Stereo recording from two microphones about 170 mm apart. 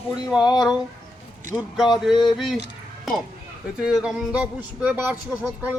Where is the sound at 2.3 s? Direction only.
Centre (ahead or behind).